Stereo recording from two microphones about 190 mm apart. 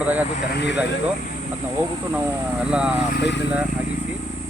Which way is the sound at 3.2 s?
65° left (ahead or behind).